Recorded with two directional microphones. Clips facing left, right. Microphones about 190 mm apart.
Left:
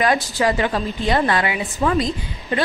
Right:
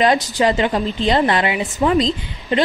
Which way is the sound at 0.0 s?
25° right (ahead or behind).